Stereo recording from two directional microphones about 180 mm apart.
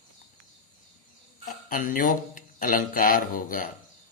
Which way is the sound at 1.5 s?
45° left (ahead or behind).